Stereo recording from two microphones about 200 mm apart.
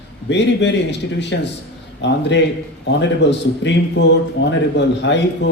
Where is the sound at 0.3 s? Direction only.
60° left (ahead or behind).